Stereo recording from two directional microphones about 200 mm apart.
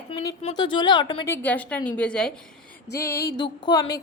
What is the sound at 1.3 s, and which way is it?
A woman's voice, 10° left (ahead or behind).